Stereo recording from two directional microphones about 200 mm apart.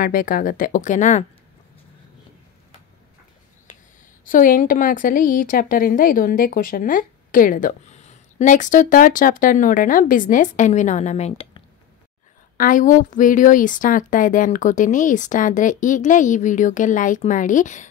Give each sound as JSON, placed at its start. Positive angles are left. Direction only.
{"t": 0.0, "sound": "speech", "side_deg": 45}
{"t": 3.7, "sound": "a sound", "side_deg": 40}
{"t": 4.3, "sound": "a woman's voice", "side_deg": 45}
{"t": 12.5, "sound": "a woman's voice", "side_deg": 40}